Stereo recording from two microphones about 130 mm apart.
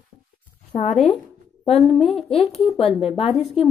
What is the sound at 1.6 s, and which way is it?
Speech, 50° left (ahead or behind).